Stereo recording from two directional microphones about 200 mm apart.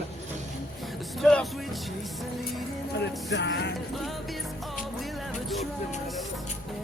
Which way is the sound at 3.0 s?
60° left (ahead or behind).